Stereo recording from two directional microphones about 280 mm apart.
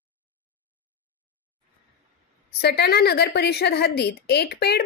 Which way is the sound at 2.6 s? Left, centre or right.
Left.